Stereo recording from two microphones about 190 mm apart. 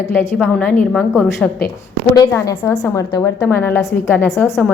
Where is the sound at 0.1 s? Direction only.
10° left (ahead or behind).